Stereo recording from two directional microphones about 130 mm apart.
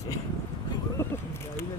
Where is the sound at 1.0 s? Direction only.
20° left (ahead or behind).